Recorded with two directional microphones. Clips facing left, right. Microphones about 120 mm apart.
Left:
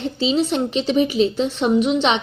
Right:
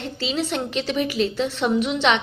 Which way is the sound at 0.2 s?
20° left (ahead or behind).